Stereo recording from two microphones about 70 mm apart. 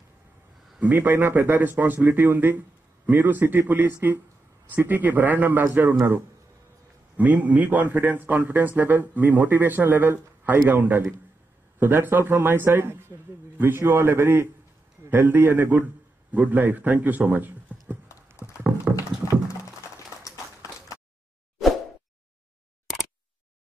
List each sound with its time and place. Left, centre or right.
0.7 s a man's voice: right
7.2 s a man's voice: right
18.3 s a sound: right